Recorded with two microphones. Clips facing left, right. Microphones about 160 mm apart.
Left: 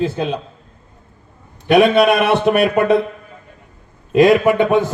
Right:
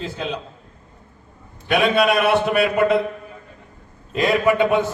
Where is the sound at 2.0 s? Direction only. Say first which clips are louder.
Left 4 dB; 55° left (ahead or behind).